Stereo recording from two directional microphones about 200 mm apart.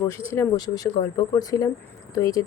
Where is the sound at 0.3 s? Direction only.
20° left (ahead or behind).